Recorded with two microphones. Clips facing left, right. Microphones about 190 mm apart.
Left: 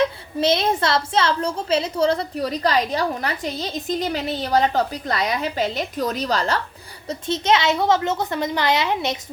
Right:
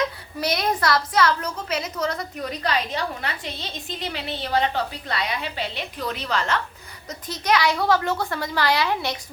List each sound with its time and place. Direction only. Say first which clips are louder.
0.3 s a woman's voice: left 5 dB; 25° left (ahead or behind)
7.1 s a child's voice: left 4 dB; 25° left (ahead or behind)